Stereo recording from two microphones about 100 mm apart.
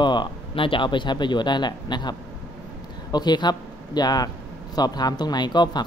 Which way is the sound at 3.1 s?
45° left (ahead or behind).